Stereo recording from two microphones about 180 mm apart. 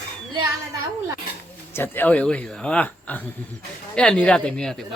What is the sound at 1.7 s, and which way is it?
Speech, 10° left (ahead or behind).